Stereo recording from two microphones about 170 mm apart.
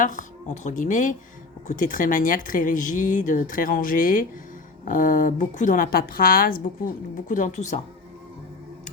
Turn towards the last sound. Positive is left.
turn(degrees=45)  # may be behind; listen again after turning